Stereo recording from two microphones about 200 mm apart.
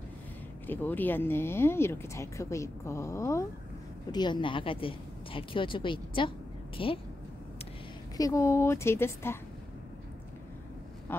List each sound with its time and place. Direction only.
0.7 s speech: 10° left (ahead or behind); by 6.9 s 25° left (ahead or behind)
8.2 s speech: 15° left (ahead or behind)
11.1 s a sound: 10° left (ahead or behind)